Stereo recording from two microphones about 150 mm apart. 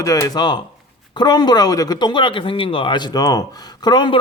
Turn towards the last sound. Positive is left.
turn(degrees=30)  # may be behind; listen again after turning